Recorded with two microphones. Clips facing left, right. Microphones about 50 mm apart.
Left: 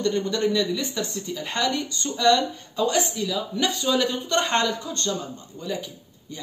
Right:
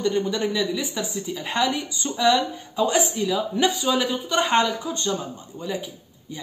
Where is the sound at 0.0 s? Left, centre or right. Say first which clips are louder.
Even; centre.